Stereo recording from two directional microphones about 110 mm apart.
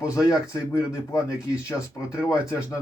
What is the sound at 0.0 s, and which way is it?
Speech, 30° left (ahead or behind).